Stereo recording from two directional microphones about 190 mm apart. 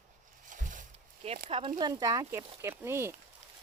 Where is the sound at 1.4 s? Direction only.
30° right (ahead or behind); by 3.1 s 15° right (ahead or behind).